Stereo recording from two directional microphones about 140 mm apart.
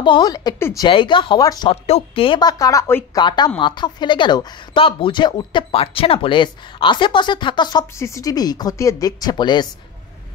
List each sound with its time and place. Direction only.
0.0 s a woman's voice: 35° left (ahead or behind)
1.7 s a woman's voice: 45° left (ahead or behind); by 3.1 s 20° left (ahead or behind)
3.2 s a woman's voice: 30° left (ahead or behind)
7.9 s speech: 20° left (ahead or behind)